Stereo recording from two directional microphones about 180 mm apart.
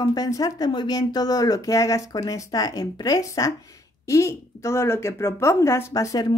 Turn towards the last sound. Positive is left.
turn(degrees=20)  # may be behind; listen again after turning